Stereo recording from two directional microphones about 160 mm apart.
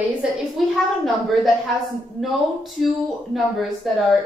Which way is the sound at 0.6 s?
Centre (ahead or behind).